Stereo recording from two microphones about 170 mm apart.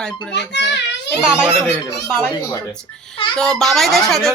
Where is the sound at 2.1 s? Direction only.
10° left (ahead or behind).